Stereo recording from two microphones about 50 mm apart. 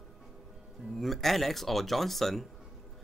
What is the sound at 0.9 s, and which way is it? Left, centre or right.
Speech, centre.